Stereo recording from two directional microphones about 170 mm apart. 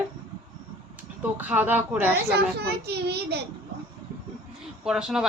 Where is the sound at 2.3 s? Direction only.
70° right (ahead or behind).